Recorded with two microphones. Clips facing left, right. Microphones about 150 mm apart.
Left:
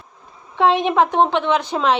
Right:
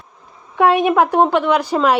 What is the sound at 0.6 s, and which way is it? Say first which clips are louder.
A woman's voice: right 2 dB; 10° right (ahead or behind).